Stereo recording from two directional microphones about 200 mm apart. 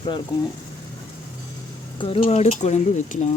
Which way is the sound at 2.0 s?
30° left (ahead or behind).